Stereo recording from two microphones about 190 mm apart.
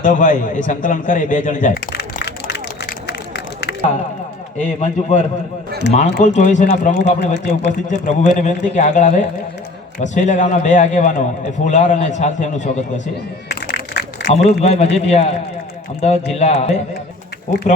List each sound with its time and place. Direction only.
0.0 s speech: 45° left (ahead or behind)
1.9 s run: 60° left (ahead or behind)
4.5 s a man's voice: 40° left (ahead or behind)
6.7 s a man's voice: 60° left (ahead or behind)
7.9 s a man's voice: 40° left (ahead or behind)
13.5 s a sound: 65° left (ahead or behind)
14.3 s a man's voice: 35° left (ahead or behind)